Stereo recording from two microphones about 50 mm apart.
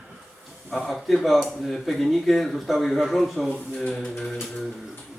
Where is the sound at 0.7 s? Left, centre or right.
Centre.